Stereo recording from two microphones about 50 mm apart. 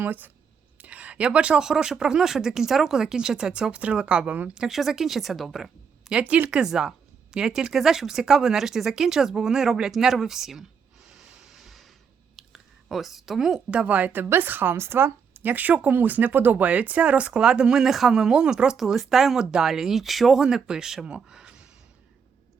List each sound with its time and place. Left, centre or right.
0.0 s a woman's voice: right
4.7 s speech: centre
6.1 s speech: right
6.5 s speech: centre
11.1 s music: centre
12.4 s a sound: centre
13.7 s a woman's voice: right; by 21.1 s centre
21.1 s a sound: centre